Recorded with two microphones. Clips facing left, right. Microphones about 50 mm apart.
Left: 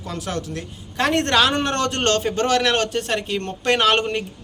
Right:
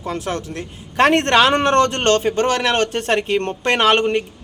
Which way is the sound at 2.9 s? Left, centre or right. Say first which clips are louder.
Right 5 dB; right.